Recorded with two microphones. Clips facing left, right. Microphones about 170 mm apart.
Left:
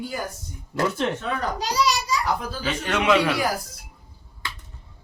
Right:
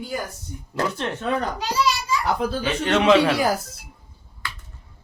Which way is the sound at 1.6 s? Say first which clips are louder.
Even; 35° left (ahead or behind).